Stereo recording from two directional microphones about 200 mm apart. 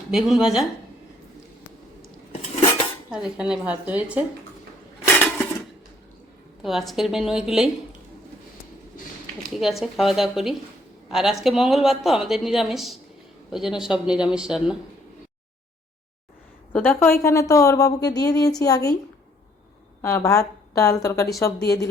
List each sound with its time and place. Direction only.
0.1 s a woman's voice: centre (ahead or behind)
3.1 s a woman's voice: 5° right (ahead or behind)
5.1 s dishes: 10° left (ahead or behind)
6.6 s a woman's voice: centre (ahead or behind)
9.6 s a woman's voice: centre (ahead or behind)
16.7 s a woman's voice: 5° left (ahead or behind)
20.0 s a woman's voice: 15° left (ahead or behind)